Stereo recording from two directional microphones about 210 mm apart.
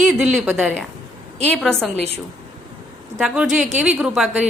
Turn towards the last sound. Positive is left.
turn(degrees=0)  # may be behind; listen again after turning